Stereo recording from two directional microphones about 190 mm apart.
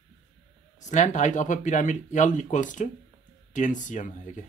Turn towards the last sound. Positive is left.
turn(degrees=40)  # may be behind; listen again after turning